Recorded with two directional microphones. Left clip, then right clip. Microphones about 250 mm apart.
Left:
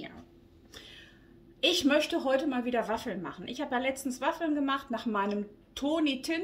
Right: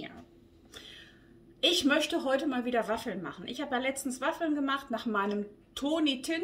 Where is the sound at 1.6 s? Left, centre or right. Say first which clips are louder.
Even; centre.